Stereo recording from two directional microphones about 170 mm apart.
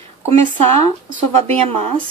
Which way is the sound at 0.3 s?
40° right (ahead or behind).